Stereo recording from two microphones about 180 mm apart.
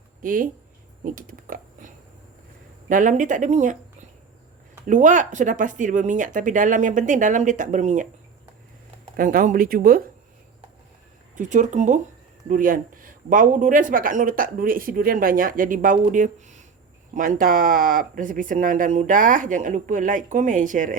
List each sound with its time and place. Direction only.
0.2 s speech: 50° right (ahead or behind)
2.9 s speech: 45° right (ahead or behind)
4.9 s speech: 45° right (ahead or behind)
9.1 s speech: 50° right (ahead or behind)
11.3 s speech: 45° right (ahead or behind)